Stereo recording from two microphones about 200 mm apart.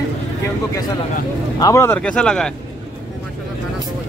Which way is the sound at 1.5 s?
15° left (ahead or behind).